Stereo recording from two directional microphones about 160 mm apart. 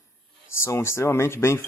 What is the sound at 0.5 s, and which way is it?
Speech, 15° left (ahead or behind).